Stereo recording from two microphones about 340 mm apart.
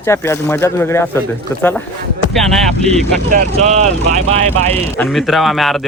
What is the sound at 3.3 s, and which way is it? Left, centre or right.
Speech, right.